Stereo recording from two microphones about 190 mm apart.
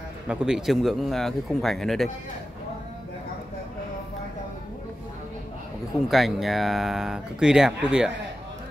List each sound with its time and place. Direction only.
0.3 s speech: 5° right (ahead or behind)
6.0 s speech: centre (ahead or behind)